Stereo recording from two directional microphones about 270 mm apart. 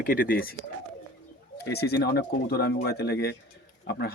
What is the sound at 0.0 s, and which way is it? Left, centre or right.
Speech, left.